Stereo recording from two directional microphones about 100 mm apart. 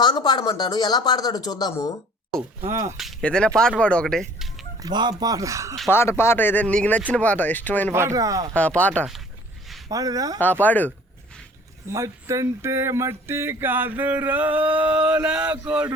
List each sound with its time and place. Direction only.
0.0 s speech: 50° left (ahead or behind)
2.6 s speech: 30° right (ahead or behind)
3.0 s a sound: centre (ahead or behind)
3.2 s speech: 10° left (ahead or behind)
4.8 s speech: 45° right (ahead or behind)
5.9 s speech: 25° left (ahead or behind)
7.9 s speech: 30° right (ahead or behind)
8.5 s speech: 15° left (ahead or behind)
9.9 s speech: 35° right (ahead or behind)
10.6 s speech: 15° left (ahead or behind)
11.9 s speech: 30° right (ahead or behind); by 15.9 s 10° right (ahead or behind)